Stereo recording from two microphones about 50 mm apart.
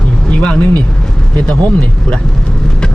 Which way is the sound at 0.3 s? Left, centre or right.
Left.